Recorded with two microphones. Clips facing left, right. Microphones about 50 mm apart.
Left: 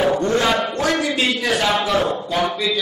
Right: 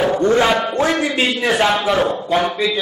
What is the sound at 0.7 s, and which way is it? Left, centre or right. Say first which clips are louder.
A man's voice: right 3 dB; right.